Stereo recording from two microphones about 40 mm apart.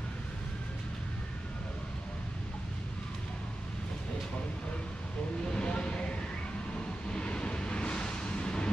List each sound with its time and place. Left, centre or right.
5.5 s vehicle: left